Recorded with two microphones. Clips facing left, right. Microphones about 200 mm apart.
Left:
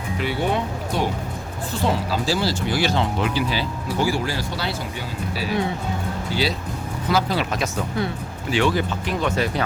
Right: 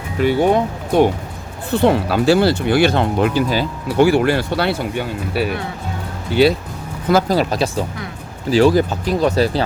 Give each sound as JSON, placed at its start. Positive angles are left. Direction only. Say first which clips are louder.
{"t": 0.2, "sound": "speech", "louder": "right 9 dB", "side_deg": -45}
{"t": 1.7, "sound": "speech", "louder": "right 8 dB", "side_deg": -60}
{"t": 3.9, "sound": "speech", "louder": "right 10 dB", "side_deg": -65}
{"t": 7.1, "sound": "speech", "louder": "right 7 dB", "side_deg": -45}